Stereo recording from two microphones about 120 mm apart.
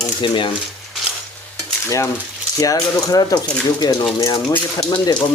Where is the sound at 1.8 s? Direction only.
25° left (ahead or behind).